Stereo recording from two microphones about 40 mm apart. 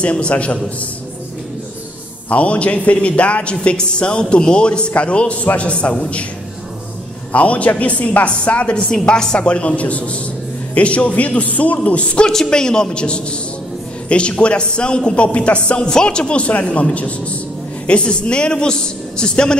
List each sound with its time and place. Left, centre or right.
0.0 s a man's voice: left
2.2 s a man's voice: left
7.3 s a man's voice: left
12.3 s a man's voice: centre